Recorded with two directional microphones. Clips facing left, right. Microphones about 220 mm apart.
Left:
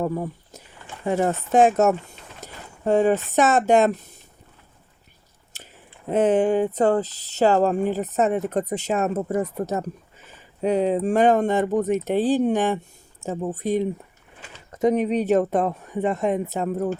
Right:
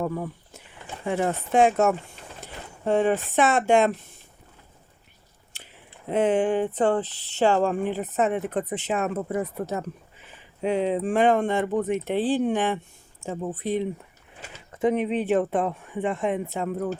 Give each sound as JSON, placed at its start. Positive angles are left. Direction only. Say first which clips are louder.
{"t": 0.0, "sound": "speech", "louder": "left 3 dB", "side_deg": 40}
{"t": 5.5, "sound": "a sound", "louder": "left 3 dB", "side_deg": 45}
{"t": 6.1, "sound": "speech", "louder": "left 3 dB", "side_deg": 45}